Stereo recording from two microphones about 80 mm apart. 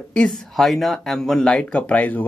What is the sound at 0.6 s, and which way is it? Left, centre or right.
Speech, centre.